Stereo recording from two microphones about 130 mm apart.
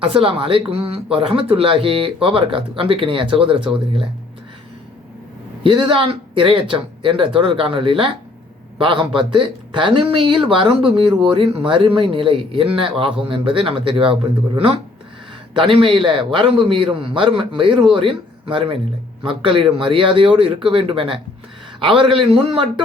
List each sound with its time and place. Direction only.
0.0 s speech: 45° right (ahead or behind)
5.6 s a man's voice: 40° right (ahead or behind)